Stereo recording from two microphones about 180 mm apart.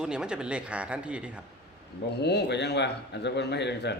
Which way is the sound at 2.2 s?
65° left (ahead or behind).